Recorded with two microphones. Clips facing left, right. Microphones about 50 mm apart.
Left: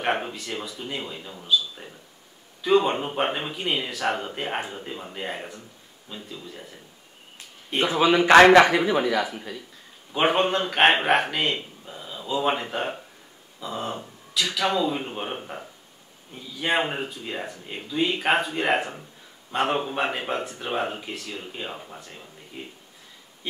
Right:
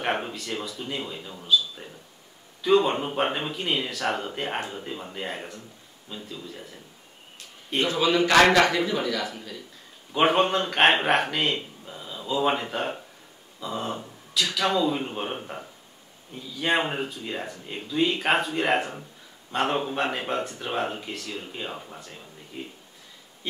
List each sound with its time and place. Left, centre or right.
0.0 s speech: centre
7.8 s speech: left
10.1 s speech: centre